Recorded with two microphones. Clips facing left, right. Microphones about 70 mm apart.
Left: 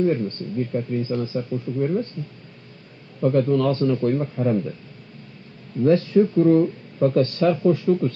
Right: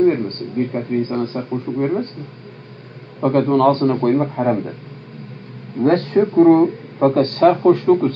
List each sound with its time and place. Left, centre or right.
0.0 s speech: right
3.2 s speech: right
5.8 s speech: right